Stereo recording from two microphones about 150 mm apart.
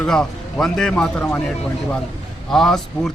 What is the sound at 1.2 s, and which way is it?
Speech, 15° left (ahead or behind).